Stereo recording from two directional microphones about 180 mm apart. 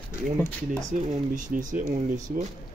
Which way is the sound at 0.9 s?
45° right (ahead or behind).